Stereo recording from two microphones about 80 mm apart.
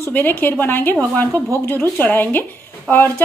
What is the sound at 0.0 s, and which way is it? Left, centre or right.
A woman's voice, left.